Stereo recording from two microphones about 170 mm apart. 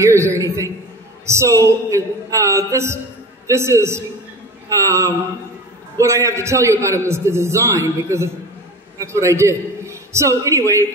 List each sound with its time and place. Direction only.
0.0 s a man's voice: 15° right (ahead or behind)